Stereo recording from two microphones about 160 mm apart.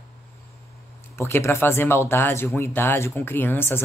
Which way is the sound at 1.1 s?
15° left (ahead or behind).